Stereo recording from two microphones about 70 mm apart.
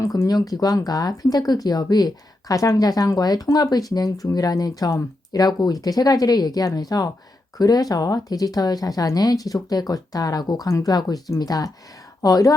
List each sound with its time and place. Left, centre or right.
0.0 s speech: left
0.3 s speech: left